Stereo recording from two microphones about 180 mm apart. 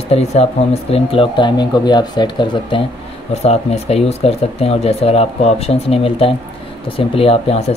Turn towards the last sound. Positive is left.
turn(degrees=35)  # may be behind; listen again after turning